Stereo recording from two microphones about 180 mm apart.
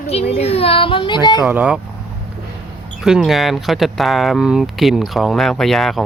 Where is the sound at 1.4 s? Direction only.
5° right (ahead or behind).